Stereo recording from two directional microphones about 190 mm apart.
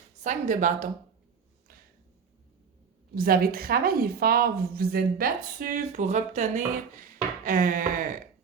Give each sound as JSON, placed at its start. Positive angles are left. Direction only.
{"t": 0.2, "sound": "speech", "side_deg": -40}
{"t": 3.2, "sound": "a woman's voice", "side_deg": -50}